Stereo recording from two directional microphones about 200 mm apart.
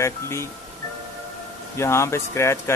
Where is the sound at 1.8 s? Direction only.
15° left (ahead or behind).